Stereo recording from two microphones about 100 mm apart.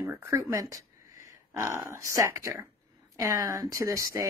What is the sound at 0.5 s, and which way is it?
A woman's voice, 35° right (ahead or behind).